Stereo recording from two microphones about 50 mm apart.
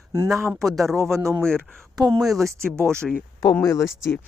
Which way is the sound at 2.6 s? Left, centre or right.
Right.